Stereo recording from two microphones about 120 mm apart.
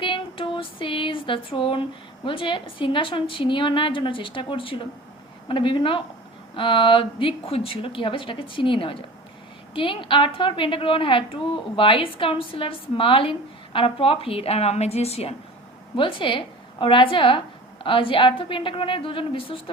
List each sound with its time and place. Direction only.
0.0 s a sound: 45° left (ahead or behind)
2.2 s a woman's voice: 45° left (ahead or behind)
16.0 s a woman's voice: 45° left (ahead or behind)